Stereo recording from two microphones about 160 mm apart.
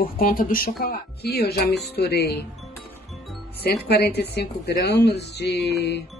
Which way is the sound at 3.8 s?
90° left.